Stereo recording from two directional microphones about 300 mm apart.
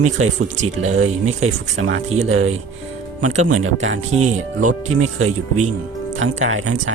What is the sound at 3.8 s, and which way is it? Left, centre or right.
Speech, right.